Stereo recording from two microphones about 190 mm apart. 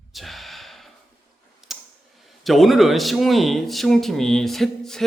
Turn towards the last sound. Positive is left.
turn(degrees=0)  # may be behind; listen again after turning